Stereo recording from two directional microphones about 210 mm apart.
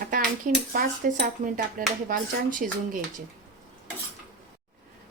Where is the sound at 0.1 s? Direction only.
40° right (ahead or behind).